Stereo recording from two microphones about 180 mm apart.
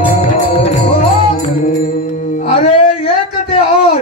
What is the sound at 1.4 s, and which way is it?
Music, 50° left (ahead or behind).